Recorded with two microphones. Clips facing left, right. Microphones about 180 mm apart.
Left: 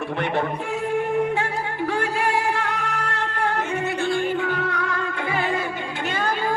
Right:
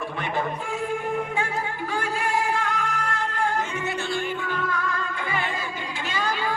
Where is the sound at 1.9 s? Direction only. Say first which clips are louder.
Left 4 dB; 65° left (ahead or behind).